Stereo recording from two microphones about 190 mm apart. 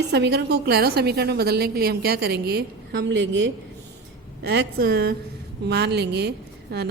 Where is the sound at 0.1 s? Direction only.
60° right (ahead or behind).